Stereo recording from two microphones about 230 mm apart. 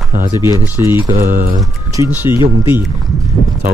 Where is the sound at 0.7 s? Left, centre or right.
Centre.